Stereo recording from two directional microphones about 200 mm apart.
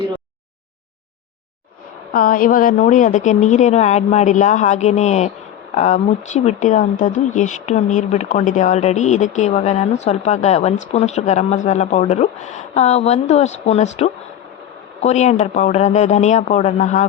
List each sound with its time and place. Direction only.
2.1 s speech: 45° left (ahead or behind)